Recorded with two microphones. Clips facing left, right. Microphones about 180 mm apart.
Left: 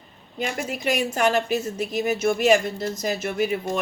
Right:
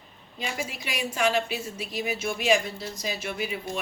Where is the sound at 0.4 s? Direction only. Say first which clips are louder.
Left 7 dB; 50° left (ahead or behind).